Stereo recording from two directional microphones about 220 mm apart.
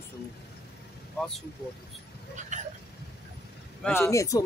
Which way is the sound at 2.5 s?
30° right (ahead or behind).